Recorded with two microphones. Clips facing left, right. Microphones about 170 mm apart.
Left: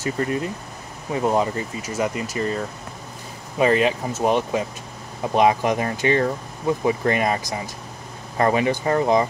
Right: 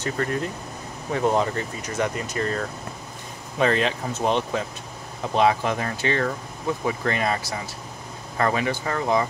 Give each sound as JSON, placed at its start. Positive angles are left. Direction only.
{"t": 0.0, "sound": "speech", "side_deg": 5}